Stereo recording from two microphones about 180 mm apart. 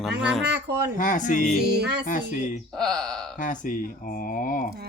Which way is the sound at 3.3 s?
45° left (ahead or behind).